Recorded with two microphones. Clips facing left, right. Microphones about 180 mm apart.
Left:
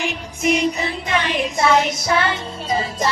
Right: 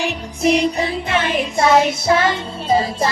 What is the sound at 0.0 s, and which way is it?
Music, 35° right (ahead or behind).